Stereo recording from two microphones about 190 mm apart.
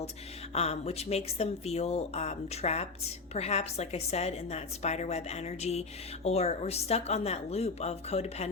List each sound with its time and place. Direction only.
0.5 s a woman's voice: 35° left (ahead or behind)